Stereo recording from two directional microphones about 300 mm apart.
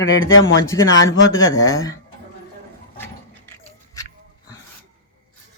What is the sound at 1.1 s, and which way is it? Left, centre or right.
Speech, left.